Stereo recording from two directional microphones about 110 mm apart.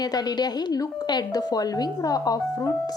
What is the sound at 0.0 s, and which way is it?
A woman's voice, 35° left (ahead or behind).